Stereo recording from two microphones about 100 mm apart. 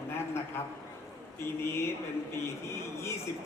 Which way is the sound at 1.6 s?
25° left (ahead or behind).